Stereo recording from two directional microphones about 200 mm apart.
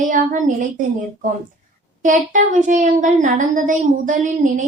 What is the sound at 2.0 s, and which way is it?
Child singing, 40° right (ahead or behind).